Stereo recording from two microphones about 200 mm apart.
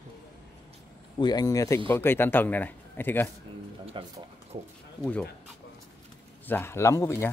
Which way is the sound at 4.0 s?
25° right (ahead or behind).